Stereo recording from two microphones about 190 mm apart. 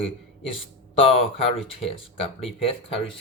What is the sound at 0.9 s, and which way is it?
A man's voice, 30° left (ahead or behind).